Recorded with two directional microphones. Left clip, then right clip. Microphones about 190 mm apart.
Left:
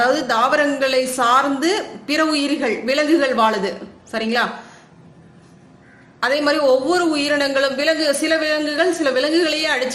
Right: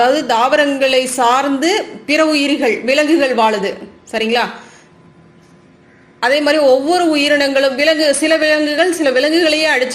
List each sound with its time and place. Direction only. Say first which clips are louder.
0.3 s a man's voice: right 4 dB; 15° right (ahead or behind)
6.1 s a man's voice: right 5 dB; 15° right (ahead or behind)